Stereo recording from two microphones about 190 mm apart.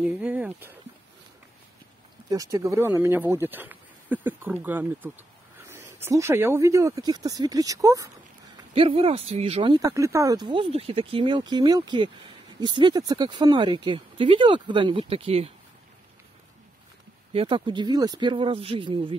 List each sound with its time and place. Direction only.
0.0 s speech: 5° right (ahead or behind)
2.2 s speech: 20° right (ahead or behind)
8.7 s speech: 30° right (ahead or behind)
17.3 s speech: 30° right (ahead or behind)